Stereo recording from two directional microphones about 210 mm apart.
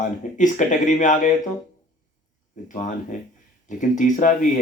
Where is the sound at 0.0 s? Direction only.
35° left (ahead or behind).